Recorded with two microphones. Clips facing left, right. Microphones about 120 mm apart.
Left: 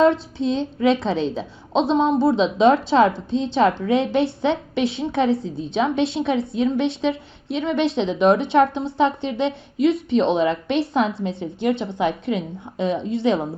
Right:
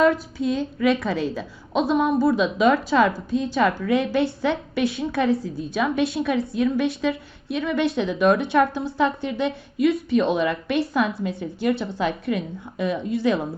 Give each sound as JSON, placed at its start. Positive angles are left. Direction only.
{"t": 0.0, "sound": "a woman's voice", "side_deg": 25}